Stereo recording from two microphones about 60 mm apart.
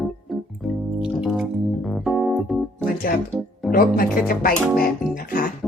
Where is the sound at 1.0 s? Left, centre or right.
Centre.